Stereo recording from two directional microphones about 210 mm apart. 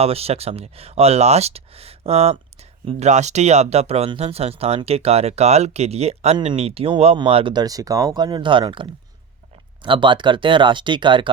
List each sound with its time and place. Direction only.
0.0 s speech: 30° right (ahead or behind)